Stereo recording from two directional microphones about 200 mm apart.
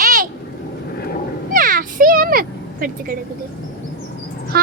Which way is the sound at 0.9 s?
50° left (ahead or behind).